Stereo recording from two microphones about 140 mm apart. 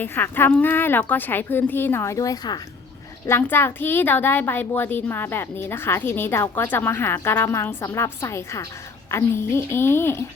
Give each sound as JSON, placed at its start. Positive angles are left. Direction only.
{"t": 0.0, "sound": "a woman's voice", "side_deg": 15}
{"t": 3.2, "sound": "a woman's voice", "side_deg": 15}